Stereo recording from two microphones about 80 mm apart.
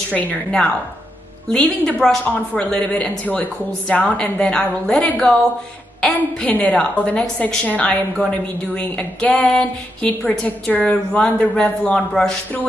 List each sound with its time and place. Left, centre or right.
0.1 s a woman's voice: centre
6.4 s a woman's voice: centre